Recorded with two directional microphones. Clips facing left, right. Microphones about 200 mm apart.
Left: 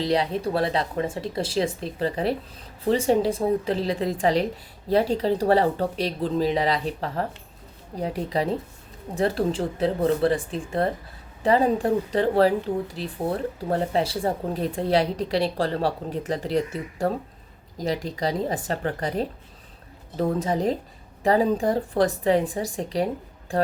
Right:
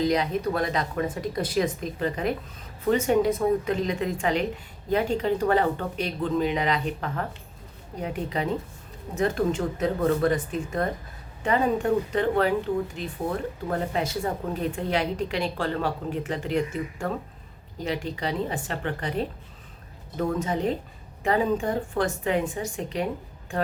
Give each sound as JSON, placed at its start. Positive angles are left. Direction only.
{"t": 0.0, "sound": "speech", "side_deg": 30}